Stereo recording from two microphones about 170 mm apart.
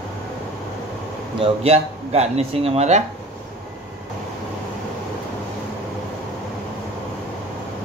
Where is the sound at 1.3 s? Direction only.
35° right (ahead or behind).